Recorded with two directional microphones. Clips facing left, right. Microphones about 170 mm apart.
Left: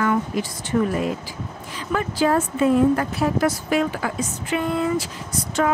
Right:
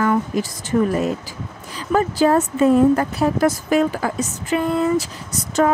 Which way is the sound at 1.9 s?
40° right (ahead or behind).